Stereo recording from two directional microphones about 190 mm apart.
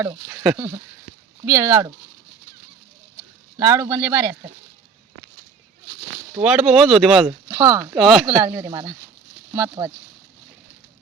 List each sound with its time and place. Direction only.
0.2 s speech: 10° right (ahead or behind)
3.6 s speech: 15° right (ahead or behind)
5.9 s speech: 10° right (ahead or behind)
7.4 s speech: 10° right (ahead or behind)
7.9 s speech: centre (ahead or behind)
8.4 s speech: 20° right (ahead or behind)